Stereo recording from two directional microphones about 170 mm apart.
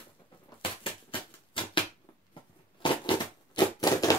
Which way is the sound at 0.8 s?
30° left (ahead or behind).